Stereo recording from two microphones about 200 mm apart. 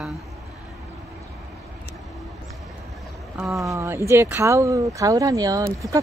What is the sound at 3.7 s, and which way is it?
Speech, 15° right (ahead or behind).